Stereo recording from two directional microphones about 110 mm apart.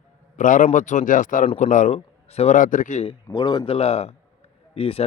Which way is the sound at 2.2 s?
75° left (ahead or behind).